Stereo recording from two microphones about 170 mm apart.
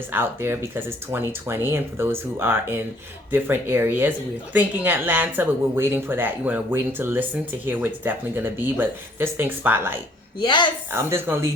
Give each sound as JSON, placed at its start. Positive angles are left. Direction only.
{"t": 0.1, "sound": "speech", "side_deg": -15}
{"t": 10.4, "sound": "speech", "side_deg": 25}
{"t": 10.9, "sound": "speech", "side_deg": -15}